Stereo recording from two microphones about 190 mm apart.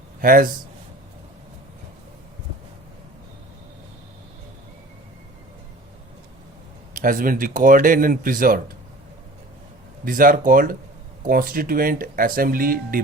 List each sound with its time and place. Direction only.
0.2 s a man's voice: 45° right (ahead or behind)
6.9 s speech: 45° right (ahead or behind)
10.0 s speech: 50° right (ahead or behind)